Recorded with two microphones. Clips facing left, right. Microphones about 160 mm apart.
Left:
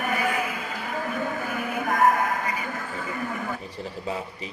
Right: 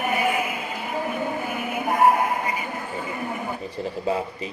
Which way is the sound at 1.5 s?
10° right (ahead or behind).